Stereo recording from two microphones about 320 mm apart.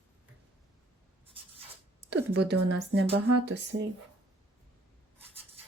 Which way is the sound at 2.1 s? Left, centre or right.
Right.